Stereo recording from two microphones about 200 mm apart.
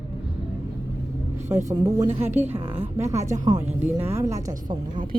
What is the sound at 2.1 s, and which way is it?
Speech, 30° right (ahead or behind).